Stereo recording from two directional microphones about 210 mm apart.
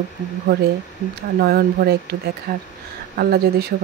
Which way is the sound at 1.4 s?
45° right (ahead or behind).